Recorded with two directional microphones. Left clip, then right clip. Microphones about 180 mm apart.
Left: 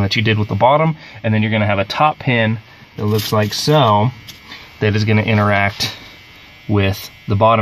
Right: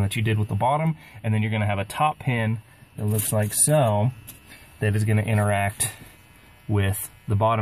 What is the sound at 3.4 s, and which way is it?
Speech, 25° right (ahead or behind).